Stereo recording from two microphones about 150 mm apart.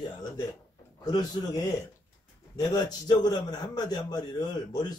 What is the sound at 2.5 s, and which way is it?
A man's voice, 25° left (ahead or behind).